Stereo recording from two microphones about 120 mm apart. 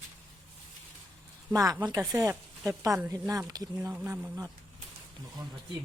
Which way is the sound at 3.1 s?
30° right (ahead or behind).